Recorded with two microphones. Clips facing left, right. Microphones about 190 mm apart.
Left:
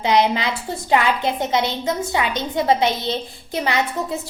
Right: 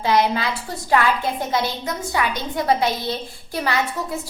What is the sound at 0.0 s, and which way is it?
A woman's voice, 20° left (ahead or behind).